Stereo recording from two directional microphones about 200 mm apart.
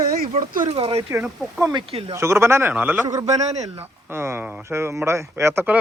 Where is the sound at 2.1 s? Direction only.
15° right (ahead or behind).